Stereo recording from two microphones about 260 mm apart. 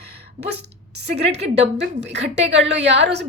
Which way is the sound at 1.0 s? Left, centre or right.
Right.